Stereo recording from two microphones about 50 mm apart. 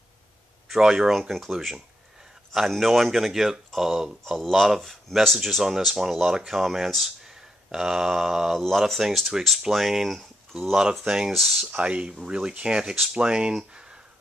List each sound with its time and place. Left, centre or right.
0.7 s speech: centre
11.3 s speech: centre
11.7 s speech: right